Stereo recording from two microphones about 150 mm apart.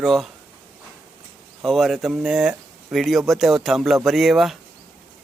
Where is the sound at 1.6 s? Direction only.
Centre (ahead or behind).